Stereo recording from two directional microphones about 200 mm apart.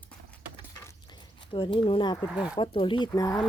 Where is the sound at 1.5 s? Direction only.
25° left (ahead or behind).